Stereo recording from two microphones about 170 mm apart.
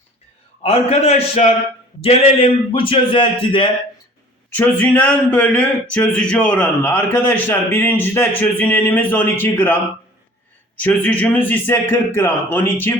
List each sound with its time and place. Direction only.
0.6 s a man's voice: 35° left (ahead or behind)
4.5 s speech: 10° left (ahead or behind)
10.8 s speech: 10° left (ahead or behind)